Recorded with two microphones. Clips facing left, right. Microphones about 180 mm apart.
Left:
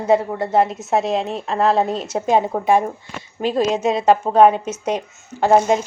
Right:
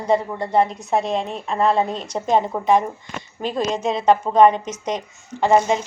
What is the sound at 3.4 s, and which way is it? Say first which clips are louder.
Speech: left 4 dB; 5° left (ahead or behind).